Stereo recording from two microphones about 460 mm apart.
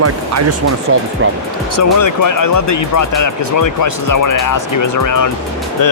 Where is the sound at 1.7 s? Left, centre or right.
Left.